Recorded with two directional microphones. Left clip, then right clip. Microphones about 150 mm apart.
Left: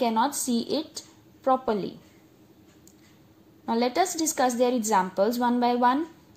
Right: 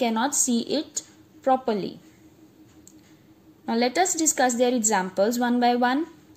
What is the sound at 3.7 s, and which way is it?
A woman's voice, 15° right (ahead or behind).